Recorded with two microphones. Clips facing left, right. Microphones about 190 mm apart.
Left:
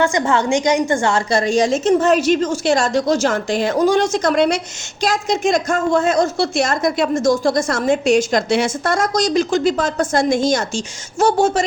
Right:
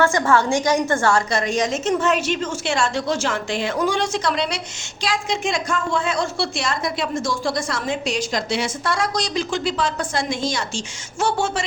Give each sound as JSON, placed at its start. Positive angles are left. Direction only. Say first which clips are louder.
{"t": 0.0, "sound": "a woman's voice", "louder": "left 1 dB", "side_deg": 20}
{"t": 1.3, "sound": "a woman's voice", "louder": "left 6 dB", "side_deg": 30}